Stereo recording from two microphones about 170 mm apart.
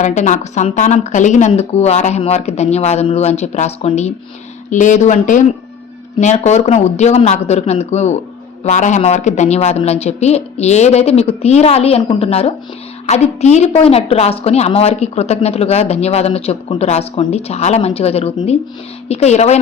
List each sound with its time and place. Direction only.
0.0 s a woman's voice: 45° left (ahead or behind)